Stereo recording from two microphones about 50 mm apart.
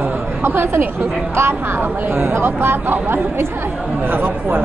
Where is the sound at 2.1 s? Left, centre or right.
Right.